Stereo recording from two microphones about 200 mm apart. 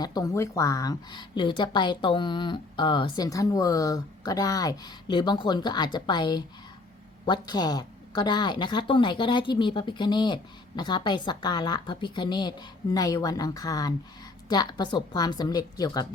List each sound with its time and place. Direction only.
0.0 s a woman's voice: 20° left (ahead or behind)